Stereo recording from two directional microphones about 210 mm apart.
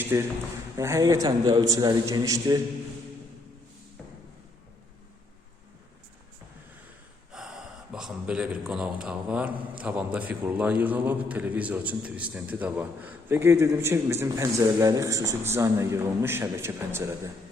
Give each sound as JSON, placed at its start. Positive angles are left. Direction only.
{"t": 0.0, "sound": "a man's voice", "side_deg": -10}
{"t": 7.3, "sound": "speech", "side_deg": -5}